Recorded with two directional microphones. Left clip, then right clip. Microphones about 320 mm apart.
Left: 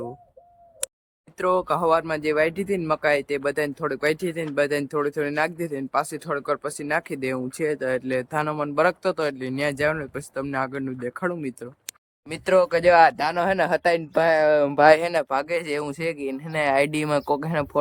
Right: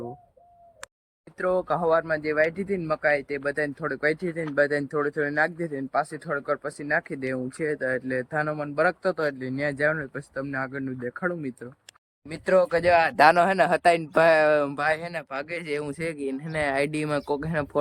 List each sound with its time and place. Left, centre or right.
1.4 s speech: centre
13.1 s speech: centre
15.0 s a man's voice: left
15.3 s speech: centre